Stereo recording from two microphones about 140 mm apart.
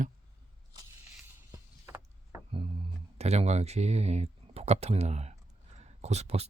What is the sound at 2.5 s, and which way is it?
Speech, 40° right (ahead or behind).